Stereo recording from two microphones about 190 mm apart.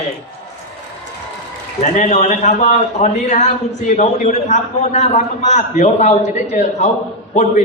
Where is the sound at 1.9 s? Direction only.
40° left (ahead or behind).